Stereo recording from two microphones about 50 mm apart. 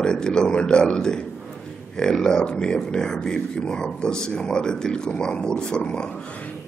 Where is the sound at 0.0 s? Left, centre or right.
Centre.